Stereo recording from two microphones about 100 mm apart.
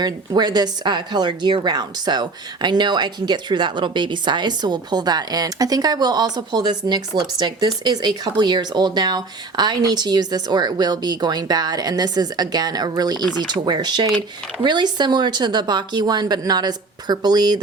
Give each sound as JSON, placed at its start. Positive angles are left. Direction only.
{"t": 0.0, "sound": "a woman's voice", "side_deg": -45}